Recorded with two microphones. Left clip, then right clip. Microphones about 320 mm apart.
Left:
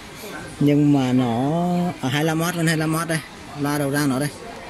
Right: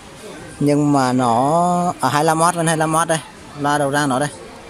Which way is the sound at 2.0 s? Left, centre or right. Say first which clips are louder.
Right 7 dB; right.